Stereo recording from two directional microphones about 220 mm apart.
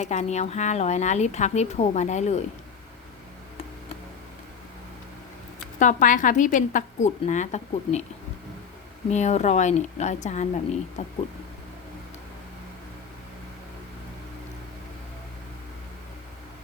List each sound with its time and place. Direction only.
0.0 s speech: 30° left (ahead or behind)
5.8 s speech: 35° left (ahead or behind)
9.0 s speech: 30° left (ahead or behind)